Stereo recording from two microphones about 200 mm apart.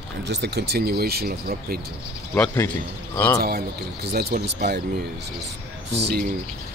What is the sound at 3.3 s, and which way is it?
Speech, 50° right (ahead or behind).